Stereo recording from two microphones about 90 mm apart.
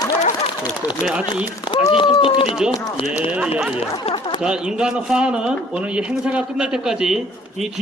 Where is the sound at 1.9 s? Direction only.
70° left (ahead or behind).